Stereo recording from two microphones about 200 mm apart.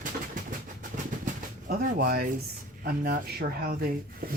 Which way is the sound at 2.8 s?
50° right (ahead or behind).